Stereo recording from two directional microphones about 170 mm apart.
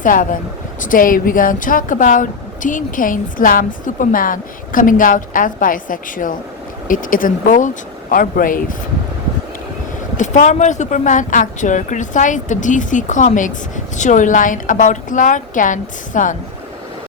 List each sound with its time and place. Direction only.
0.0 s a woman's voice: 50° left (ahead or behind)
10.2 s a woman's voice: 45° left (ahead or behind)